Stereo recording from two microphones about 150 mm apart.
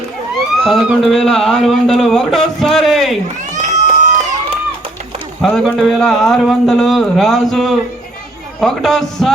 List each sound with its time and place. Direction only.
0.6 s speech: centre (ahead or behind)
3.5 s crowd: 55° right (ahead or behind)
5.4 s speech: centre (ahead or behind)